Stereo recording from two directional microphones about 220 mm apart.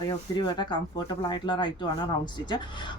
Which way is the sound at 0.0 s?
20° left (ahead or behind).